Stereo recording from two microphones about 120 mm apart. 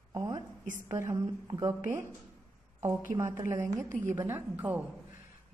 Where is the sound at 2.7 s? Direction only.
25° right (ahead or behind).